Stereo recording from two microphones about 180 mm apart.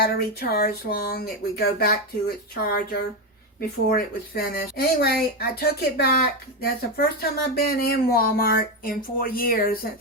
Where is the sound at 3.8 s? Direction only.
55° left (ahead or behind).